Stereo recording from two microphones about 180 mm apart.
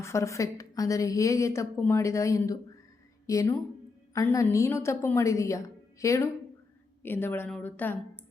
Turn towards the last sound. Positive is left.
turn(degrees=10)  # may be behind; listen again after turning